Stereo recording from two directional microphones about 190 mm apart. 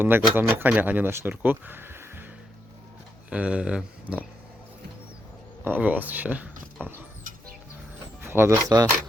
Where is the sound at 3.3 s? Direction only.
5° right (ahead or behind).